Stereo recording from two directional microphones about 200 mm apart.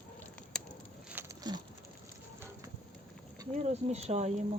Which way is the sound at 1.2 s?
10° right (ahead or behind).